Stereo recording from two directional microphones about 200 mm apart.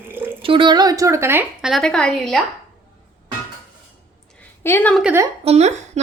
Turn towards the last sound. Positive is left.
turn(degrees=-35)  # may be behind; listen again after turning